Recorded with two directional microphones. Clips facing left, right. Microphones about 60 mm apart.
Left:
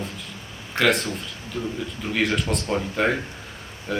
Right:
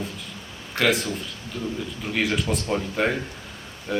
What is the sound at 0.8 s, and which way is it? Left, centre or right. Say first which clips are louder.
Speech: left 1 dB; left.